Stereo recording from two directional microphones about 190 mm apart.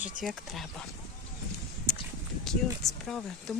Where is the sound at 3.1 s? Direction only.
Centre (ahead or behind).